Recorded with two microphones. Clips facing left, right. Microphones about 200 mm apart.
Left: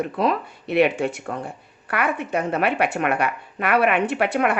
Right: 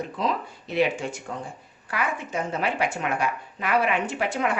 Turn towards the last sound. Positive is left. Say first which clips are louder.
# left 5 dB
turn(degrees=65)  # may be behind; listen again after turning